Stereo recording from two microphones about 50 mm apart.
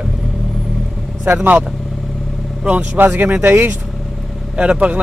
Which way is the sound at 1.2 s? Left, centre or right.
Right.